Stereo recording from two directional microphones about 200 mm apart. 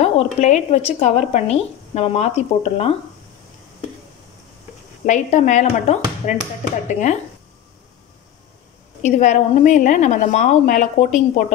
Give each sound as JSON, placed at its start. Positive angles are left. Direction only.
{"t": 0.0, "sound": "speech", "side_deg": 35}
{"t": 5.0, "sound": "speech", "side_deg": 35}
{"t": 9.0, "sound": "speech", "side_deg": 35}